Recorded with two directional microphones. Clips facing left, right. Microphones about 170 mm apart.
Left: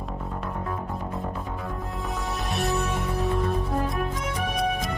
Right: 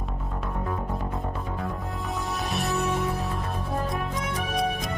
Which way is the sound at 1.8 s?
Centre (ahead or behind).